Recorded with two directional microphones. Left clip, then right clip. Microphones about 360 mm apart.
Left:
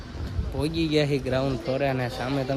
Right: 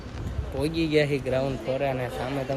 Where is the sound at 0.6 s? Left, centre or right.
Centre.